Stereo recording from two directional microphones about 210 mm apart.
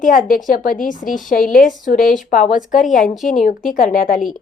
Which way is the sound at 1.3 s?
40° left (ahead or behind).